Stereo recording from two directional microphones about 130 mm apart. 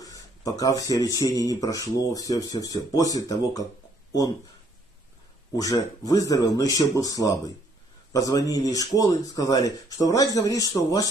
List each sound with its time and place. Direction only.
0.0 s a sound: 30° left (ahead or behind)
1.0 s speech: 25° left (ahead or behind)
5.6 s speech: 25° left (ahead or behind)